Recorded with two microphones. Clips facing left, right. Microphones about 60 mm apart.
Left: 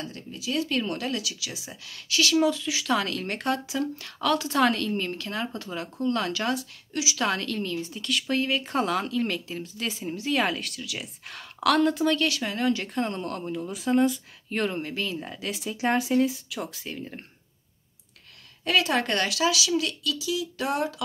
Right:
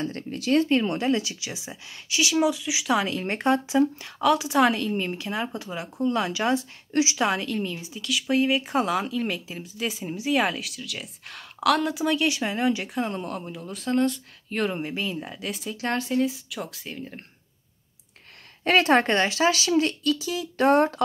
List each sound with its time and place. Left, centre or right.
0.3 s a woman's voice: right
0.7 s speech: right
3.3 s speech: right
6.9 s speech: right
7.2 s speech: centre
12.9 s speech: centre
14.8 s speech: centre
15.1 s speech: centre
18.6 s a woman's voice: right
19.0 s speech: right